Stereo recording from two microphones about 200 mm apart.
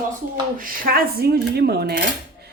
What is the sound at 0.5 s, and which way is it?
Speech, 45° right (ahead or behind).